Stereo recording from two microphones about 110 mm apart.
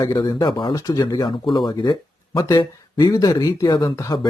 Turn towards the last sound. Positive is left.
turn(degrees=30)  # may be behind; listen again after turning